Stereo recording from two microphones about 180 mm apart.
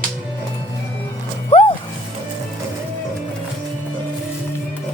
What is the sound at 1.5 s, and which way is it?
Music, 35° left (ahead or behind).